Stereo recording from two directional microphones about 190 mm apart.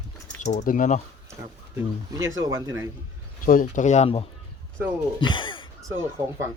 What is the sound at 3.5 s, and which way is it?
Mantra, 45° left (ahead or behind).